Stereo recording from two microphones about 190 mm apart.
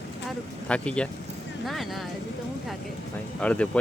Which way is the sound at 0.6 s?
5° left (ahead or behind).